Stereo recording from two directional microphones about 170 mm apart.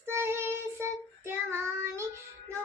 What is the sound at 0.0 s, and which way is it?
Child singing, 15° right (ahead or behind).